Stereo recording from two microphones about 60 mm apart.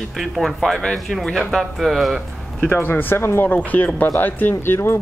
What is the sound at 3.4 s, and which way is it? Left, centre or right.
Speech, left.